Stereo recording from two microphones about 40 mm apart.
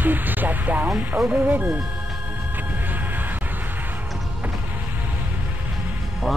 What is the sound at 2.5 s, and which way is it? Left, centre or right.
Music, right.